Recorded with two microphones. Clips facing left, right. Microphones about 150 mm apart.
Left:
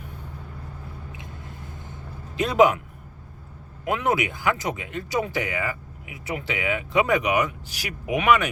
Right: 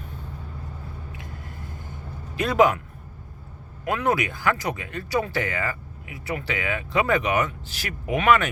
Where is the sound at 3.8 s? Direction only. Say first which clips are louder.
Even; 20° left (ahead or behind).